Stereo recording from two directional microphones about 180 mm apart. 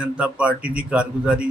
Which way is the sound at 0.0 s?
5° right (ahead or behind).